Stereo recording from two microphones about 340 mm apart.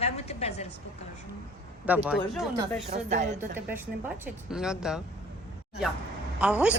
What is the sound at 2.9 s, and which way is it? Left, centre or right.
Speech, right.